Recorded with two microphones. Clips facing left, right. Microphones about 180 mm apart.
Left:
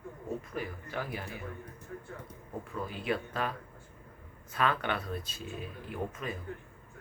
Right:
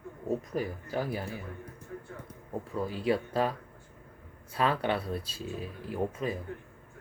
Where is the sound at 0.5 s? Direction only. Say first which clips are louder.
Right 5 dB; 35° right (ahead or behind).